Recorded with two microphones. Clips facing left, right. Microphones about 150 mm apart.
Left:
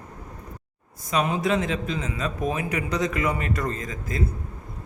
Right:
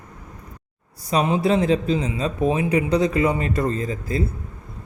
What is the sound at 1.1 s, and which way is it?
Speech, 30° right (ahead or behind).